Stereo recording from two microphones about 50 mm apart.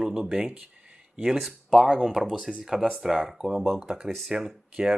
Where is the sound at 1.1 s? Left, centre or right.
Centre.